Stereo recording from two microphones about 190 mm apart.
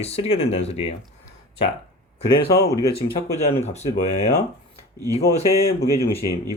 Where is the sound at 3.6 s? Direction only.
35° left (ahead or behind).